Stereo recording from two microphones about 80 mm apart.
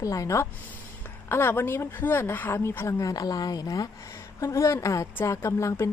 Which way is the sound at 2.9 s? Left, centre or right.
Left.